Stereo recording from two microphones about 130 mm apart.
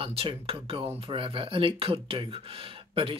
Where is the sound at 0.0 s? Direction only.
45° right (ahead or behind).